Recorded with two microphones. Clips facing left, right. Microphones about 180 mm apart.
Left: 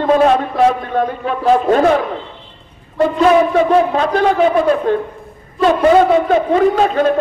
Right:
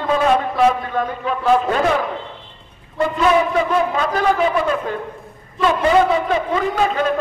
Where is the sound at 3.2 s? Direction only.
40° left (ahead or behind).